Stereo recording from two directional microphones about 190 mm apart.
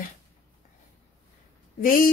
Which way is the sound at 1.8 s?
50° left (ahead or behind).